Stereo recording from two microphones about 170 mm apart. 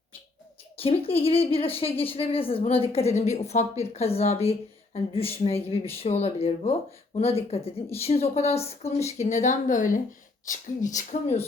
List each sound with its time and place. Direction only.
0.8 s speech: 35° left (ahead or behind)